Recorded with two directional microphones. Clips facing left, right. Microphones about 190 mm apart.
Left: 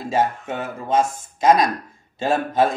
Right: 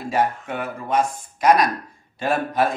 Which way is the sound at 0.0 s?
25° left (ahead or behind).